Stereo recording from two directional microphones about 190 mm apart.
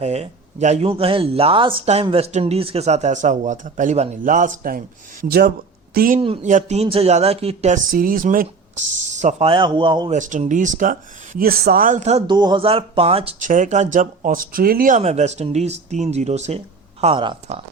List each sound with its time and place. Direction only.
0.0 s speech: 35° right (ahead or behind); by 6.1 s 50° right (ahead or behind)
6.1 s speech: 30° right (ahead or behind)
10.1 s speech: 40° right (ahead or behind)
12.3 s speech: 25° right (ahead or behind)